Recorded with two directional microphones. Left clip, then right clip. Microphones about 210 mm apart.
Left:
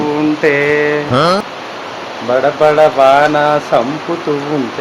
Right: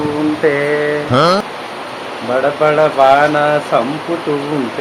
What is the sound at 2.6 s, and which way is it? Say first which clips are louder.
Speech: left 2 dB; 20° left (ahead or behind).